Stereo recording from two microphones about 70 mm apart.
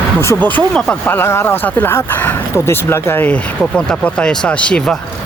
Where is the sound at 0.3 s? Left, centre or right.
Left.